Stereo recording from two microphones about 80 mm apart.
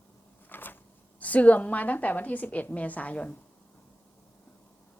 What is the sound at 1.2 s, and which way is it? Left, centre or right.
A woman's voice, centre.